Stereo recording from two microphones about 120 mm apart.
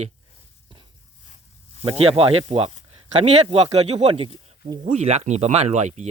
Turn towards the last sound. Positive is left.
turn(degrees=-75)  # may be behind; listen again after turning